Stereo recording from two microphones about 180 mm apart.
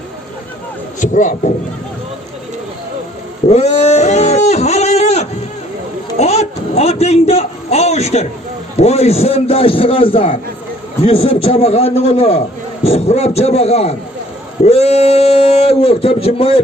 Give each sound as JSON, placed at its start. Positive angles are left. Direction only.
{"t": 1.0, "sound": "a man's voice", "side_deg": 45}
{"t": 3.4, "sound": "a sound", "side_deg": 35}
{"t": 6.1, "sound": "a man's voice", "side_deg": 35}